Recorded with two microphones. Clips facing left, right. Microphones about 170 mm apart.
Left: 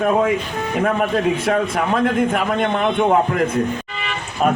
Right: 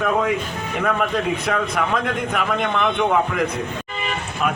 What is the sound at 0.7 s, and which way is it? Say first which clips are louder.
A man's voice: left 3 dB; 40° left (ahead or behind).